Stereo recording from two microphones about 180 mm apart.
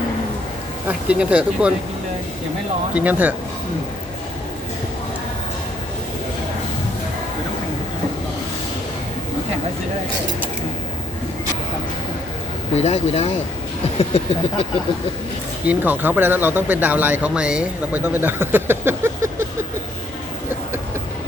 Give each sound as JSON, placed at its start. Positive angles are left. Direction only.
{"t": 0.9, "sound": "speech", "side_deg": -5}
{"t": 2.9, "sound": "speech", "side_deg": -10}
{"t": 12.7, "sound": "speech", "side_deg": 35}
{"t": 13.8, "sound": "a sound", "side_deg": 35}
{"t": 15.6, "sound": "speech", "side_deg": -10}